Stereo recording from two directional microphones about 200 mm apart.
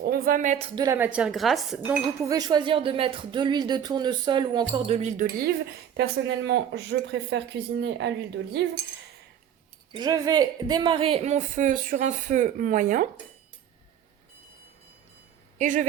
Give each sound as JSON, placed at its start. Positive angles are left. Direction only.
{"t": 0.0, "sound": "a sound", "side_deg": -45}
{"t": 0.8, "sound": "speech", "side_deg": -10}
{"t": 2.2, "sound": "speech", "side_deg": -20}
{"t": 6.0, "sound": "speech", "side_deg": -60}
{"t": 9.9, "sound": "a woman's voice", "side_deg": -20}
{"t": 15.5, "sound": "speech", "side_deg": -40}